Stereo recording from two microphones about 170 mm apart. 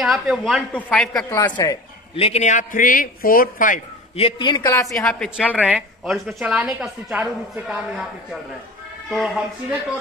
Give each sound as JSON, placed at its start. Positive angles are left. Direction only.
{"t": 0.0, "sound": "a woman's voice", "side_deg": 0}
{"t": 1.3, "sound": "speech", "side_deg": 20}
{"t": 2.1, "sound": "a man's voice", "side_deg": 35}
{"t": 4.2, "sound": "speech", "side_deg": 25}
{"t": 5.0, "sound": "a woman's voice", "side_deg": 5}
{"t": 5.6, "sound": "a woman's voice", "side_deg": -5}